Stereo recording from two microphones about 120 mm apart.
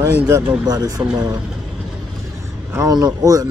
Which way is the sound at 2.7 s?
30° right (ahead or behind).